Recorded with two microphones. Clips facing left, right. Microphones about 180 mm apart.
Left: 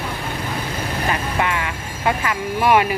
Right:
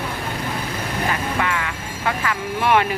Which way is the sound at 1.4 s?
20° left (ahead or behind).